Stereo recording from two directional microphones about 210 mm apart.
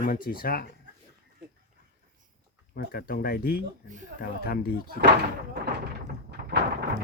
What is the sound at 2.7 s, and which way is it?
Speech, 45° left (ahead or behind).